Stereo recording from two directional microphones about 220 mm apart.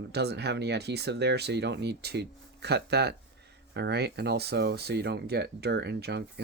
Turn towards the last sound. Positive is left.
turn(degrees=-50)  # may be behind; listen again after turning